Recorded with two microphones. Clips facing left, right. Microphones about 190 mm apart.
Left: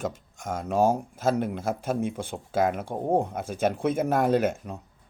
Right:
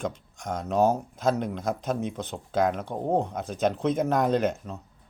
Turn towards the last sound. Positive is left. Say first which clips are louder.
# left 1 dB
turn(degrees=10)  # may be behind; listen again after turning